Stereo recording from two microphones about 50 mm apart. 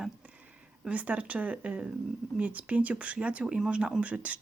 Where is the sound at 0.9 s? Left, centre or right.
Right.